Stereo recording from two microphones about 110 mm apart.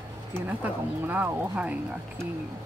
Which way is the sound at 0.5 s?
15° right (ahead or behind).